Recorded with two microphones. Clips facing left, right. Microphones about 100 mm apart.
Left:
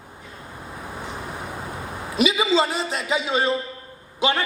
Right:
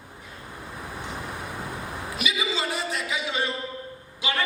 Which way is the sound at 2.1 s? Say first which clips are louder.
Left 10 dB; 25° left (ahead or behind).